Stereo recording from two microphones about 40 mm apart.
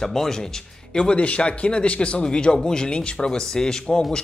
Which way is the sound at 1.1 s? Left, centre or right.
Left.